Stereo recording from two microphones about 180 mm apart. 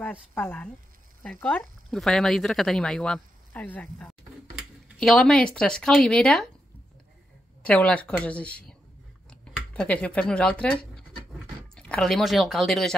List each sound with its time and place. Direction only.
0.0 s speech: 10° left (ahead or behind)
7.6 s speech: 5° left (ahead or behind)